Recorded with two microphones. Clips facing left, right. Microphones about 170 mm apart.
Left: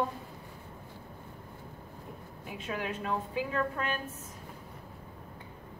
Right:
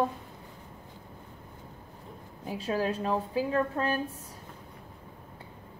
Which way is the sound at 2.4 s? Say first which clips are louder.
Right 7 dB; 35° right (ahead or behind).